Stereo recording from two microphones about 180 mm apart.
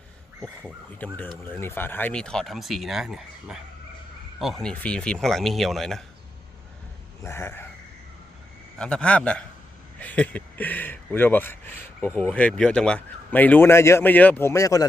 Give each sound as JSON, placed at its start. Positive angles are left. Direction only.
{"t": 0.6, "sound": "speech", "side_deg": 10}
{"t": 4.6, "sound": "speech", "side_deg": 5}
{"t": 7.2, "sound": "speech", "side_deg": 15}
{"t": 8.8, "sound": "speech", "side_deg": 5}